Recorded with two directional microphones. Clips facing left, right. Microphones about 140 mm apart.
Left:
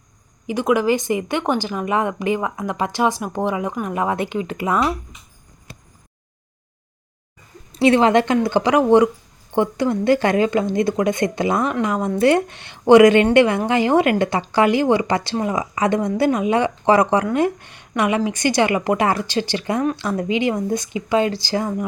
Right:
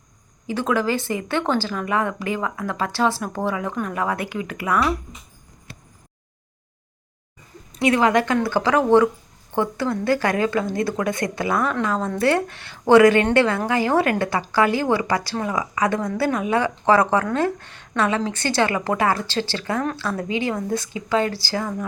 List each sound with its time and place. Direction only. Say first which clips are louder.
0.4 s speech: left 4 dB; 15° left (ahead or behind)
7.7 s a woman's voice: left 4 dB; 30° left (ahead or behind)